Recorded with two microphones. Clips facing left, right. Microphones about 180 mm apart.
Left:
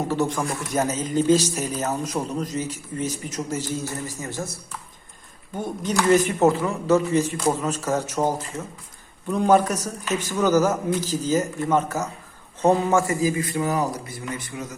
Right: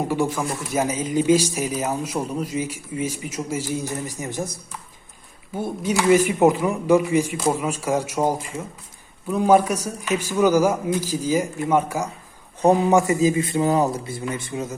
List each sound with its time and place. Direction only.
0.1 s speech: 10° right (ahead or behind)
5.5 s speech: 10° right (ahead or behind); by 14.8 s 25° right (ahead or behind)